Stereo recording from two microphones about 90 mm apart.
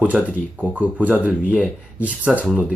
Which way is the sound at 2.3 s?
Centre (ahead or behind).